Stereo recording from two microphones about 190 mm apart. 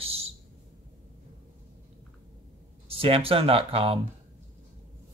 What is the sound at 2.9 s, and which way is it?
Speech, 30° right (ahead or behind).